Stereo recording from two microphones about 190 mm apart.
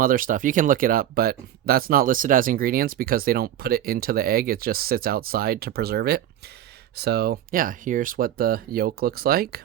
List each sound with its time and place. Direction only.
0.0 s speech: 45° right (ahead or behind)